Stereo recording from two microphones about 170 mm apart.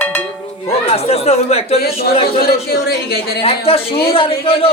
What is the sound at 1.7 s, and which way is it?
Speech, 65° left (ahead or behind).